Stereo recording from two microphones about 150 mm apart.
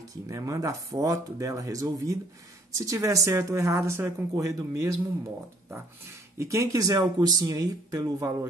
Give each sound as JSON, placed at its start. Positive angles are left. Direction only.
{"t": 0.3, "sound": "a woman's voice", "side_deg": -20}
{"t": 6.3, "sound": "a woman's voice", "side_deg": -20}